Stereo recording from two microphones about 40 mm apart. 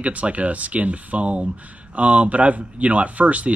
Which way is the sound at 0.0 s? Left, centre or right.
Right.